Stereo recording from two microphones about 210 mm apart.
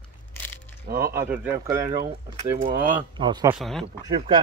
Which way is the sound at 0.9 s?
45° right (ahead or behind).